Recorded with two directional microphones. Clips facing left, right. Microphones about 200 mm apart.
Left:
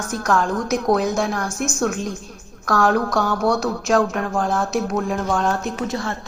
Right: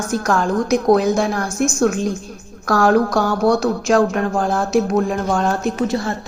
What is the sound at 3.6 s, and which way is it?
Speech, centre (ahead or behind).